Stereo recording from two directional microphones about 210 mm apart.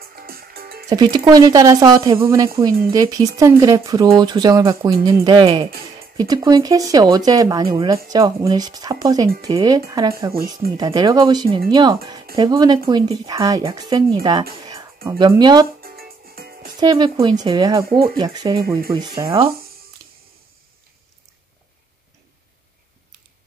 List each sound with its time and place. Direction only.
0.1 s music: 45° right (ahead or behind)
0.8 s speech: 20° right (ahead or behind)
14.6 s music: 20° right (ahead or behind)
15.0 s speech: 20° right (ahead or behind)
15.8 s music: 45° right (ahead or behind)
16.8 s speech: 20° right (ahead or behind)
17.8 s speech: 45° right (ahead or behind)
18.1 s speech: 20° right (ahead or behind)